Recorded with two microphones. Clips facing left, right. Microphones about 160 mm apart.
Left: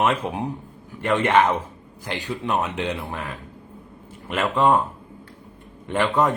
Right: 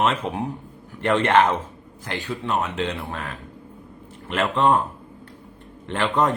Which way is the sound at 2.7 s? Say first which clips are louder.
Even; 15° left (ahead or behind).